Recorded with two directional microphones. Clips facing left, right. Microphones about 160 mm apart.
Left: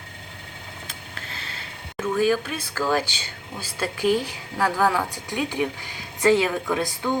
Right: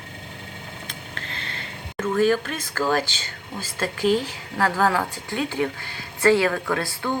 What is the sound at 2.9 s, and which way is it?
A woman's voice, 10° left (ahead or behind).